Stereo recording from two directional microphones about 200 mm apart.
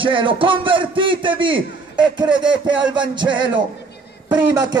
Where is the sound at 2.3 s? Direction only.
5° right (ahead or behind).